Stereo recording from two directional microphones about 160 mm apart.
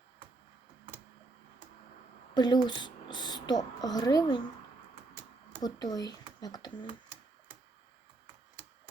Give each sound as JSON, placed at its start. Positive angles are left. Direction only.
{"t": 2.3, "sound": "speech", "side_deg": 25}
{"t": 5.6, "sound": "speech", "side_deg": 25}